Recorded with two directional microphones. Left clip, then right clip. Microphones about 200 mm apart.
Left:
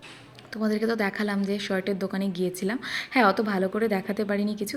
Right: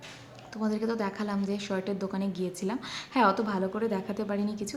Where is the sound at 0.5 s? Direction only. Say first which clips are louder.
Left 5 dB; 5° left (ahead or behind).